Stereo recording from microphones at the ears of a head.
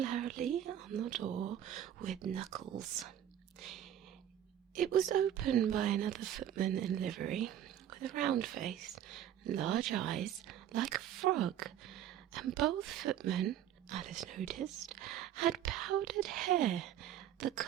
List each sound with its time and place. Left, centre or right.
0.0 s speech: right
4.7 s speech: right